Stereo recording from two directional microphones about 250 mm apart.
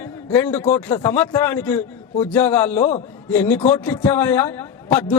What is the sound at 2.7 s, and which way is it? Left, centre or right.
Speech, left.